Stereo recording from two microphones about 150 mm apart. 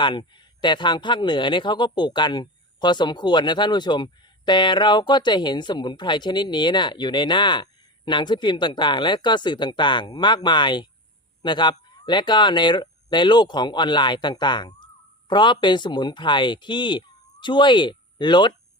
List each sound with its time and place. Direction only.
0.0 s speech: 30° left (ahead or behind)